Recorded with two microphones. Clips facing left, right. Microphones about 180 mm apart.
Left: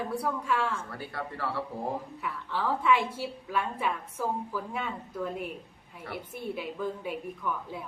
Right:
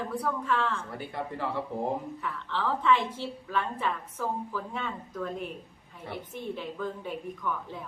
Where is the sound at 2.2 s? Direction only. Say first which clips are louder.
Even; 10° left (ahead or behind).